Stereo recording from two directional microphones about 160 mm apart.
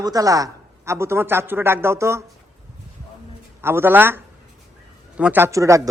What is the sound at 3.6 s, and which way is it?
Speech, 15° right (ahead or behind).